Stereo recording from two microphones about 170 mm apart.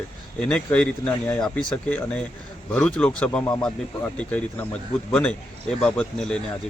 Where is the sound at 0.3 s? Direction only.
5° left (ahead or behind).